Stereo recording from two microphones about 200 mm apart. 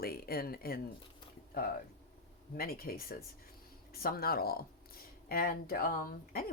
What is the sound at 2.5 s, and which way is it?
Speech, 50° left (ahead or behind).